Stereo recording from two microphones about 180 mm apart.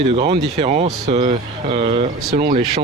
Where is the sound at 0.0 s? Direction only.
35° right (ahead or behind).